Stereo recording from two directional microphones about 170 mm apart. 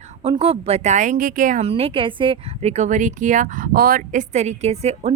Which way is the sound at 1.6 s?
35° right (ahead or behind).